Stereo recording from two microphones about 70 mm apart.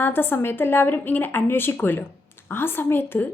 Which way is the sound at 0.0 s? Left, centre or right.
Left.